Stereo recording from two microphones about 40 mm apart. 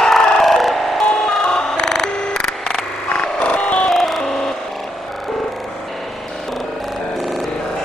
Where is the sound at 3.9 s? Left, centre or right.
Centre.